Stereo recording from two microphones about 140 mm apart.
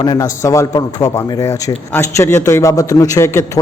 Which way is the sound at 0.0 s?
25° left (ahead or behind).